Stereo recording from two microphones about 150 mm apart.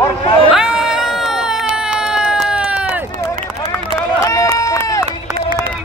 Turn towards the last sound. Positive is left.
turn(degrees=20)  # may be behind; listen again after turning